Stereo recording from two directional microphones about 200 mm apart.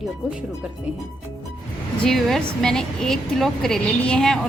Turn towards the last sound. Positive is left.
turn(degrees=5)  # may be behind; listen again after turning